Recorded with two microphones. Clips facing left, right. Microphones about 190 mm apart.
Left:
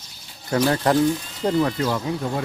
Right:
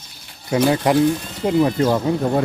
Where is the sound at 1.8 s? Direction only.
45° right (ahead or behind).